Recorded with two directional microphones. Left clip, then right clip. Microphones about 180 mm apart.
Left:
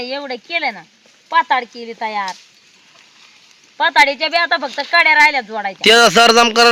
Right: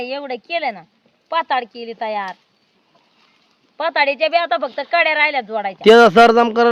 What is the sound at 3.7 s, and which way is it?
Speech, 25° right (ahead or behind).